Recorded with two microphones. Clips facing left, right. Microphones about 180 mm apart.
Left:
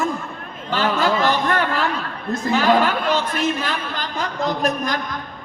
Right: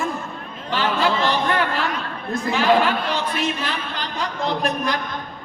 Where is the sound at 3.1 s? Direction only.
45° left (ahead or behind).